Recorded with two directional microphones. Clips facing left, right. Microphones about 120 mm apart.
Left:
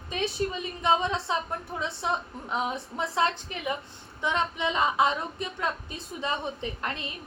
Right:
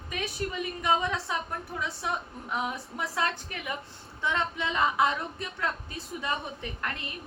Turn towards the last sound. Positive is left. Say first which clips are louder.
# left 3 dB
turn(degrees=20)  # may be behind; listen again after turning